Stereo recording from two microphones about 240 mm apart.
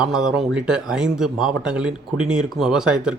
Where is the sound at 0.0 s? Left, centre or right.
Centre.